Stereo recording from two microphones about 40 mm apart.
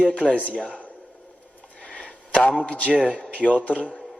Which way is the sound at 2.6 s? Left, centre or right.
Left.